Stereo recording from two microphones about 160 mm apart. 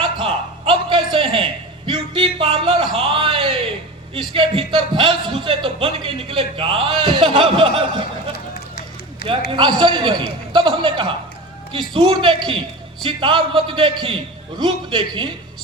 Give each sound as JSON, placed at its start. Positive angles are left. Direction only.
{"t": 0.0, "sound": "a sound", "side_deg": -35}
{"t": 1.9, "sound": "a man's voice", "side_deg": -30}
{"t": 9.5, "sound": "a man's voice", "side_deg": -30}